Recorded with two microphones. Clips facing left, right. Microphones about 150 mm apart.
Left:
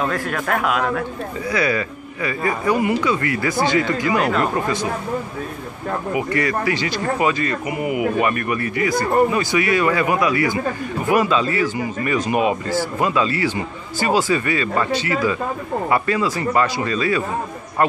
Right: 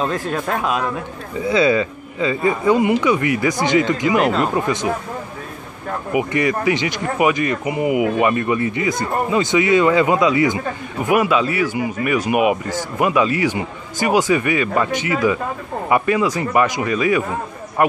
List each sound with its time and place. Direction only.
0.0 s a man's voice: 20° right (ahead or behind)
6.1 s a man's voice: 20° right (ahead or behind)